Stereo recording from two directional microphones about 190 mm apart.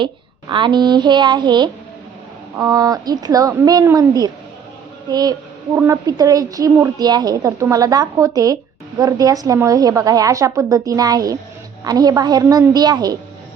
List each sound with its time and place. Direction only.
0.0 s a woman's voice: 25° right (ahead or behind)